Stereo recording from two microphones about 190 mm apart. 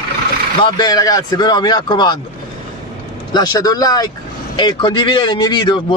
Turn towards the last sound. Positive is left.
turn(degrees=25)  # may be behind; listen again after turning